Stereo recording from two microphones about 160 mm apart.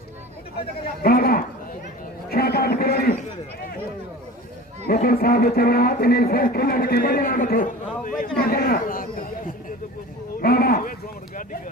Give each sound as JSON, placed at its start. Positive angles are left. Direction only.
{"t": 1.0, "sound": "a man's voice", "side_deg": 70}
{"t": 4.8, "sound": "speech", "side_deg": 70}
{"t": 8.4, "sound": "speech", "side_deg": 70}
{"t": 10.4, "sound": "a sound", "side_deg": 70}